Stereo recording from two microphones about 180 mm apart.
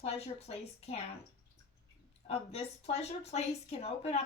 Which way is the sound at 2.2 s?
35° left (ahead or behind).